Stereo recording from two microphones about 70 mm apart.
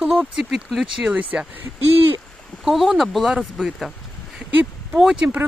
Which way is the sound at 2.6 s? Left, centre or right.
Centre.